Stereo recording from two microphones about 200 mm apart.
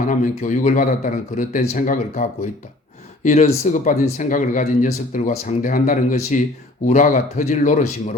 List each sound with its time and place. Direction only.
0.1 s speech: 40° left (ahead or behind)